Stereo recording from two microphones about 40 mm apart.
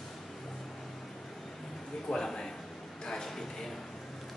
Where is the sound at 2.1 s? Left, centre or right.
Centre.